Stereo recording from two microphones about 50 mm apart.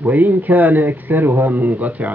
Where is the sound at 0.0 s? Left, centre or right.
Right.